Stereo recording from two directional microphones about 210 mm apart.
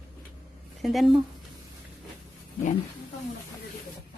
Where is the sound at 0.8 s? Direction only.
Centre (ahead or behind).